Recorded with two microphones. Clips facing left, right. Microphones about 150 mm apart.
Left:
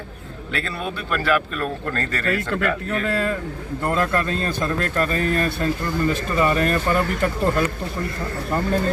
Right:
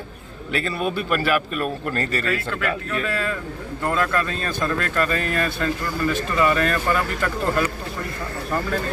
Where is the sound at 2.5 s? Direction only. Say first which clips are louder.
Left 3 dB; 30° left (ahead or behind).